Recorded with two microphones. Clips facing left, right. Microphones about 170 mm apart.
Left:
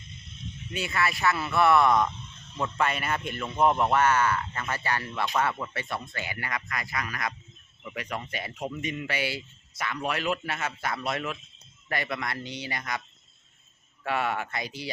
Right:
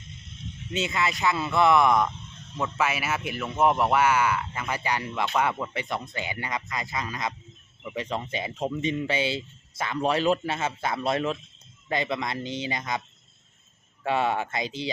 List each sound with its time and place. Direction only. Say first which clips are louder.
0.7 s a man's voice: right 2 dB; 20° right (ahead or behind)
14.0 s speech: right 4 dB; 25° right (ahead or behind)